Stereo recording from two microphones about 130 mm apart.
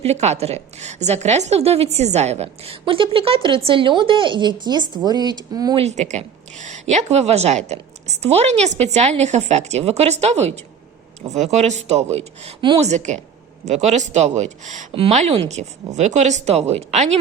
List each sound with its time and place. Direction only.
0.0 s a woman's voice: 55° right (ahead or behind); by 5.7 s 30° right (ahead or behind)
5.7 s a woman's voice: 60° right (ahead or behind)
15.1 s a woman's voice: 55° right (ahead or behind)